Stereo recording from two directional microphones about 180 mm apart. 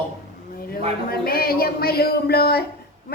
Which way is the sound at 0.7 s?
55° left (ahead or behind).